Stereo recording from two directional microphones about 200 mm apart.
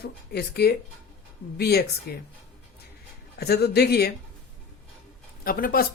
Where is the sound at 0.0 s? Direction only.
55° left (ahead or behind).